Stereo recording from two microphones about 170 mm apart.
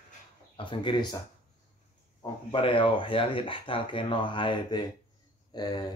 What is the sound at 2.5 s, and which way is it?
Speech, 30° left (ahead or behind).